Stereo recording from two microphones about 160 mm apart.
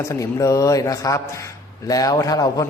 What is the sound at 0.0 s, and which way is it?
Speech, 20° left (ahead or behind).